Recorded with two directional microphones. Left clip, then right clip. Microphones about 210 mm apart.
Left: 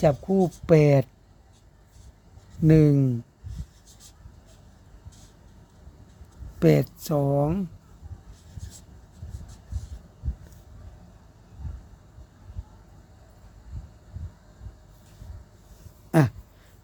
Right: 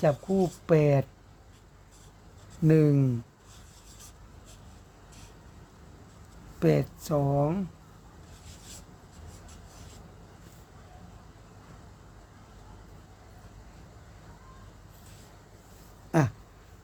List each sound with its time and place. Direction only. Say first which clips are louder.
0.0 s speech: left 4 dB; 25° left (ahead or behind)
2.6 s speech: left 3 dB; 25° left (ahead or behind)
6.6 s speech: left 5 dB; 30° left (ahead or behind)
16.1 s a sound: left 4 dB; 30° left (ahead or behind)